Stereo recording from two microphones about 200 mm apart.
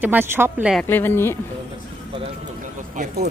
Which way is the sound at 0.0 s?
10° right (ahead or behind).